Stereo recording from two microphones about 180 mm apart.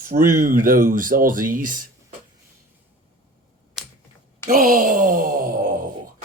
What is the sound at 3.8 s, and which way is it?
Computer keyboard, centre (ahead or behind).